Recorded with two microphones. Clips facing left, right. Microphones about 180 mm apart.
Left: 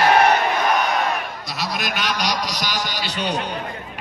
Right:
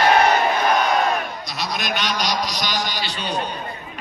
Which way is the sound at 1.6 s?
5° left (ahead or behind).